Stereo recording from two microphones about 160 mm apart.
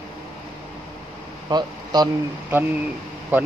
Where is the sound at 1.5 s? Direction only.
25° right (ahead or behind).